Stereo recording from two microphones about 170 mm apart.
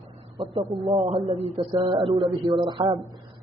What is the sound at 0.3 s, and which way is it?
A man's voice, 30° right (ahead or behind).